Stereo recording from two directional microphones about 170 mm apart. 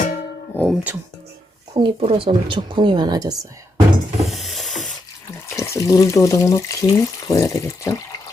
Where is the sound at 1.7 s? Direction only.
30° right (ahead or behind).